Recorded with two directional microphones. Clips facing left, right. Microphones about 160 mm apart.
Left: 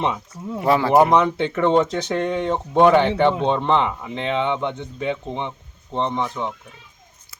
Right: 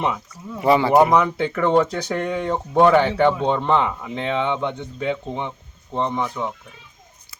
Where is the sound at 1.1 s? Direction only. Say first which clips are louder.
Left 1 dB; 25° left (ahead or behind).